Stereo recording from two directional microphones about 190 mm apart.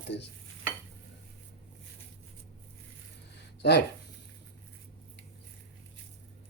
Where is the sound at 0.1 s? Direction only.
65° left (ahead or behind).